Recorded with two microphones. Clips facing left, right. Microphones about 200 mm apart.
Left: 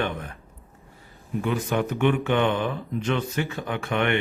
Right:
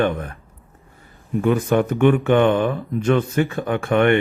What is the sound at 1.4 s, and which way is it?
Speech, 50° right (ahead or behind).